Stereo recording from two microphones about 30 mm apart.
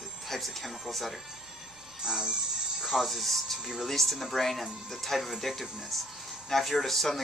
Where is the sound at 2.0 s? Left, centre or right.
Centre.